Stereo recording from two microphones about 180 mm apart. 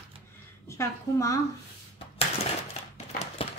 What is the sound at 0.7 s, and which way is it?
Speech, 15° left (ahead or behind).